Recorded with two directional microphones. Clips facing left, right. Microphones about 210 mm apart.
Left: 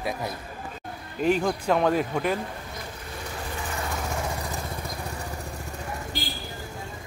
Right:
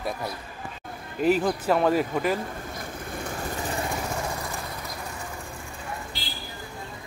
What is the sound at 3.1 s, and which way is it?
Vehicle, 50° right (ahead or behind).